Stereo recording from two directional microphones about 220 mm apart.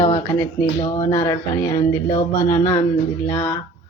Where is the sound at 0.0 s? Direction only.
20° left (ahead or behind).